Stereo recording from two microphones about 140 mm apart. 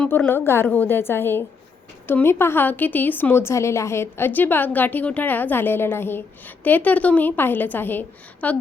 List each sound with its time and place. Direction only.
0.0 s a woman's voice: 10° left (ahead or behind)